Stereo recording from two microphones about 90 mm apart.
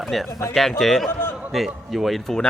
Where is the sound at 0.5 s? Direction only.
Centre (ahead or behind).